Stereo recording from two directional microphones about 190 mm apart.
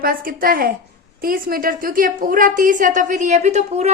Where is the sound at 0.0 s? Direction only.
50° right (ahead or behind).